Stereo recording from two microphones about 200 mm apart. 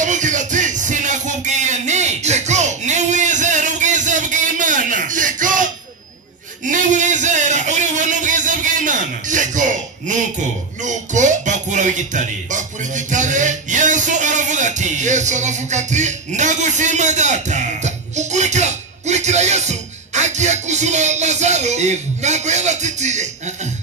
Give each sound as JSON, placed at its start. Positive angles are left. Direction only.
{"t": 0.0, "sound": "music", "side_deg": -40}
{"t": 6.6, "sound": "a sound", "side_deg": -40}
{"t": 10.8, "sound": "music", "side_deg": -40}